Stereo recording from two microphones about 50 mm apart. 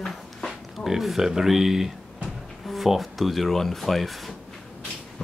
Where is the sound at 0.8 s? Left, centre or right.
Centre.